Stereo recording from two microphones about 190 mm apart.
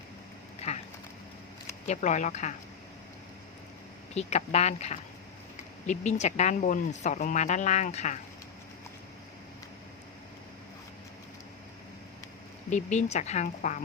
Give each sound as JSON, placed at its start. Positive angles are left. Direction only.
{"t": 0.6, "sound": "speech", "side_deg": 35}
{"t": 1.9, "sound": "speech", "side_deg": 40}
{"t": 4.1, "sound": "speech", "side_deg": 35}
{"t": 12.7, "sound": "speech", "side_deg": 35}